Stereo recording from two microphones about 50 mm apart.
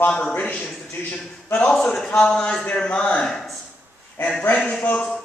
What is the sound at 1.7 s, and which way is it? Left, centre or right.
Speech, centre.